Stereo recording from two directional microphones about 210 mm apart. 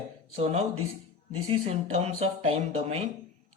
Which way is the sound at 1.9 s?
30° right (ahead or behind).